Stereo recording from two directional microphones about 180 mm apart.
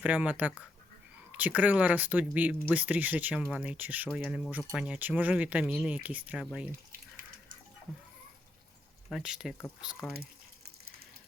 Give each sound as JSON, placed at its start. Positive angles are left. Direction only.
{"t": 0.0, "sound": "speech", "side_deg": -10}
{"t": 4.1, "sound": "speech", "side_deg": 5}
{"t": 7.2, "sound": "a sound", "side_deg": -50}
{"t": 9.0, "sound": "speech", "side_deg": 0}